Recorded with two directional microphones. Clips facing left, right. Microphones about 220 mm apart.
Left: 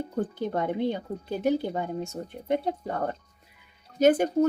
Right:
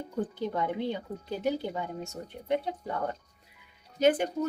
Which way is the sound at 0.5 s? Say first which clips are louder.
Left 6 dB; 50° left (ahead or behind).